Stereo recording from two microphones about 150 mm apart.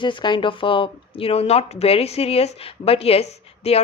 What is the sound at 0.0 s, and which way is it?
Speech, 30° left (ahead or behind).